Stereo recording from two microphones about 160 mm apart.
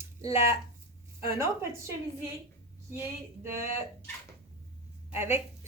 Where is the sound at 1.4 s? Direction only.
15° right (ahead or behind).